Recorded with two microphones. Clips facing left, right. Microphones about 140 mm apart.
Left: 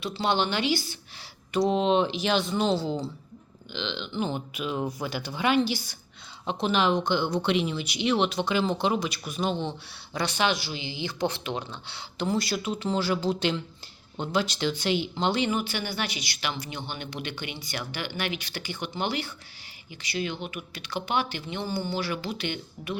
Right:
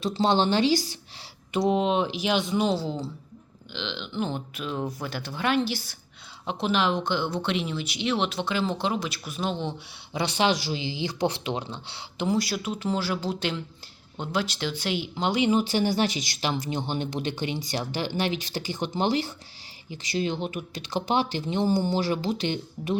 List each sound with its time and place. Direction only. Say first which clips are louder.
0.0 s a woman's voice: right 4 dB; 40° right (ahead or behind)
1.5 s speech: even; 10° right (ahead or behind)
10.1 s speech: right 2 dB; 25° right (ahead or behind)
12.2 s speech: right 1 dB; 10° right (ahead or behind)
15.4 s a woman's voice: right 6 dB; 35° right (ahead or behind)